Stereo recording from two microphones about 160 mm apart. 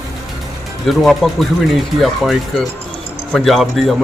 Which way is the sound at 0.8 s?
Centre (ahead or behind).